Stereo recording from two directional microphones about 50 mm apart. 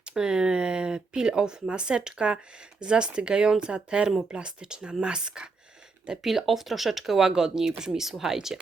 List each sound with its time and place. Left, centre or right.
0.0 s speech: centre
6.1 s speech: centre